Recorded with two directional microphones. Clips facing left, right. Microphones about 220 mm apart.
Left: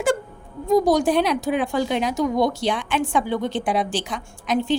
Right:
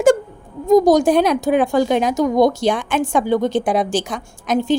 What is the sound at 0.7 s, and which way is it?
Speech, 45° right (ahead or behind).